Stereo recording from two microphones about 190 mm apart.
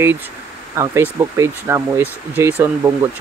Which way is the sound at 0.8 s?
15° right (ahead or behind).